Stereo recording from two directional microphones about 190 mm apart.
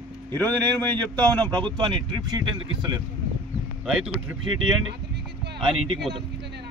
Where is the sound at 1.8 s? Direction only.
25° right (ahead or behind).